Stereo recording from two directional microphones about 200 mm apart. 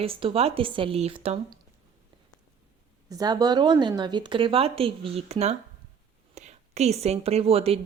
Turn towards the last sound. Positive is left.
turn(degrees=-30)  # may be behind; listen again after turning